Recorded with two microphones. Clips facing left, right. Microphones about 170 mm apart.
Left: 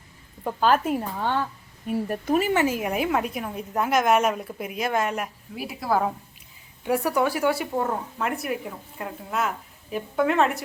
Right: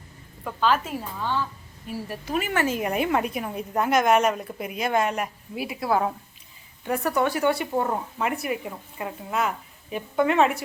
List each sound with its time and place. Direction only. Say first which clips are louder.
0.6 s speech: left 3 dB; 50° left (ahead or behind)
2.5 s speech: left 3 dB; 20° left (ahead or behind)
2.7 s speech: right 1 dB; 5° left (ahead or behind)